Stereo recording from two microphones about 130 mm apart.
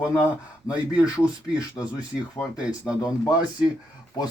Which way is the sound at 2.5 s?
5° right (ahead or behind).